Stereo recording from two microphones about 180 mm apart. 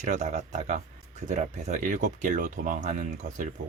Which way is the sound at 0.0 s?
45° right (ahead or behind).